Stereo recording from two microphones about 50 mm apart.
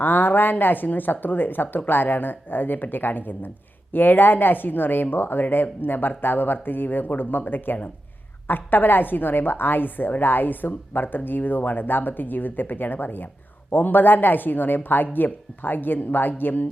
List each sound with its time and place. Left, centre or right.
0.0 s a woman's voice: left